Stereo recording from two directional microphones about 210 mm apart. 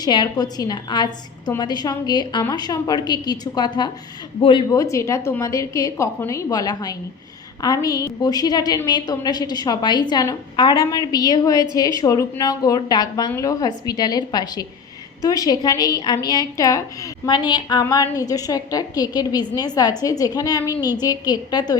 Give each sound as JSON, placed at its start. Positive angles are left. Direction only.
{"t": 0.0, "sound": "a woman's voice", "side_deg": 20}